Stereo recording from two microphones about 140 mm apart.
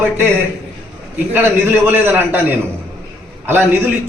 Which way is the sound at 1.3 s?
15° right (ahead or behind).